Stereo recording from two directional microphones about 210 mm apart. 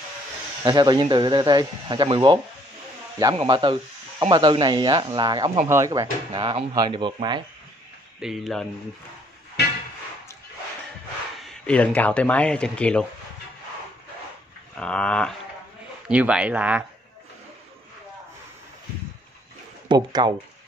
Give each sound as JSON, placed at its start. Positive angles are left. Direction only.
{"t": 0.7, "sound": "speech", "side_deg": -20}
{"t": 8.2, "sound": "speech", "side_deg": 0}
{"t": 11.4, "sound": "speech", "side_deg": 5}
{"t": 14.8, "sound": "speech", "side_deg": 5}
{"t": 19.9, "sound": "speech", "side_deg": -20}